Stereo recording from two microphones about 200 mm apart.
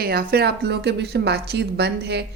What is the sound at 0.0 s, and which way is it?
A woman's voice, 50° right (ahead or behind).